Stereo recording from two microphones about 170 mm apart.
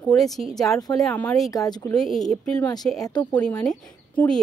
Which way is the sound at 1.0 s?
5° left (ahead or behind).